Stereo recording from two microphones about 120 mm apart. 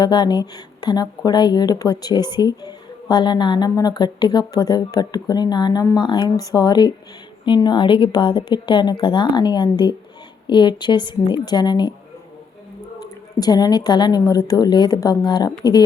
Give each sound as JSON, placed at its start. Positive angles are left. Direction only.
{"t": 0.0, "sound": "speech", "side_deg": 35}
{"t": 13.4, "sound": "speech", "side_deg": 35}